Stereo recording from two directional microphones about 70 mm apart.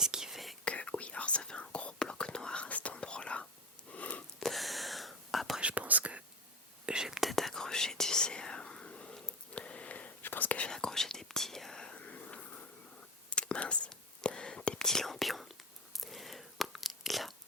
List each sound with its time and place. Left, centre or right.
0.0 s whispering: centre
0.6 s whispering: centre
3.9 s a sound: centre
4.4 s whispering: centre
5.5 s whispering: centre
6.8 s whispering: centre; by 10.7 s left
10.7 s whispering: centre